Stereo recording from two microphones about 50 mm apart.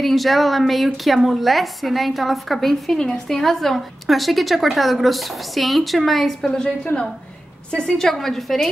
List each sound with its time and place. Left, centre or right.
0.0 s a woman's voice: centre
8.1 s a woman's voice: centre